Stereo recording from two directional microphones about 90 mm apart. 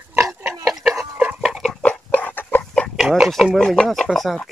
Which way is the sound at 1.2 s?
15° right (ahead or behind).